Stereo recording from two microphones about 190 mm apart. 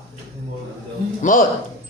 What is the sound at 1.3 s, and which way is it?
Speech, 45° left (ahead or behind).